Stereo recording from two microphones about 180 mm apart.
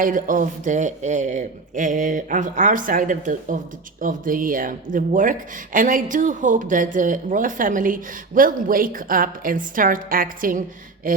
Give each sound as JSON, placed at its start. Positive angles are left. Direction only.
{"t": 0.0, "sound": "speech", "side_deg": -45}